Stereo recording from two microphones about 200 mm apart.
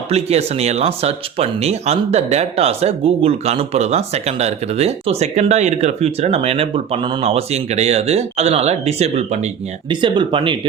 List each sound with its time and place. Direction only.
0.1 s speech: 30° right (ahead or behind)